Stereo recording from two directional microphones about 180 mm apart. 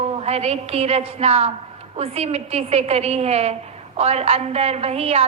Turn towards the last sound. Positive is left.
turn(degrees=-35)  # may be behind; listen again after turning